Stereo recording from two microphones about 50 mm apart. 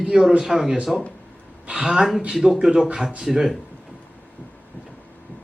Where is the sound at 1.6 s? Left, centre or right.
Centre.